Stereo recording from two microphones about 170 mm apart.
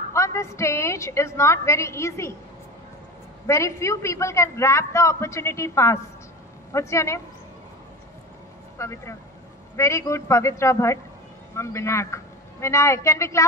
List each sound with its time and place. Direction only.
0.1 s a man's voice: 15° left (ahead or behind)
3.4 s a man's voice: 15° left (ahead or behind)
8.7 s a man's voice: 15° left (ahead or behind)